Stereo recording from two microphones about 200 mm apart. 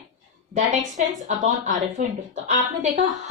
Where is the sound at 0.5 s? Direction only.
35° right (ahead or behind).